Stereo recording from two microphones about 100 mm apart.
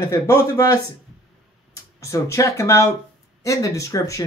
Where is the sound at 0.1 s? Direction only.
30° left (ahead or behind).